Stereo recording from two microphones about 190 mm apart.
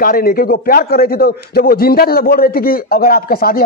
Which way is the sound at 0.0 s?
50° left (ahead or behind).